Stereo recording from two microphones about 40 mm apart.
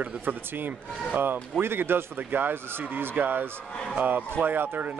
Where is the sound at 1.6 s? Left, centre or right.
Right.